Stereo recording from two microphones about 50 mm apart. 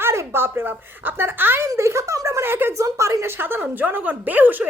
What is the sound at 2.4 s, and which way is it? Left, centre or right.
Speech, right.